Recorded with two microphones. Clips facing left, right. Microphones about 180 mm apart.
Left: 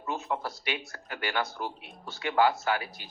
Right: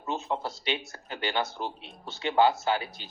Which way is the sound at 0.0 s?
25° right (ahead or behind).